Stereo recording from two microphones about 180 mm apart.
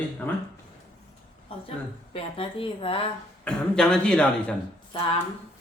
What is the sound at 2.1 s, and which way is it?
Speech, 30° left (ahead or behind).